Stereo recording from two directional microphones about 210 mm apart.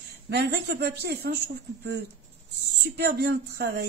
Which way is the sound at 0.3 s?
50° right (ahead or behind).